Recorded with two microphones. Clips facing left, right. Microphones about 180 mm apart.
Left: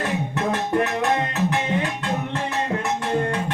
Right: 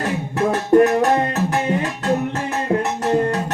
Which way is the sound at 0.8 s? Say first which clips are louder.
Right 8 dB; 40° right (ahead or behind).